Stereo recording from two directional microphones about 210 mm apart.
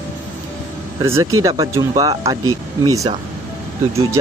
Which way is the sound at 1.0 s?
15° right (ahead or behind).